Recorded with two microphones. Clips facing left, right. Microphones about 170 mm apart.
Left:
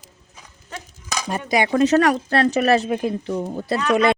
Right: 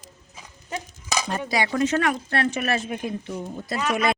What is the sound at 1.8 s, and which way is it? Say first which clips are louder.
Speech: left 8 dB; 35° left (ahead or behind).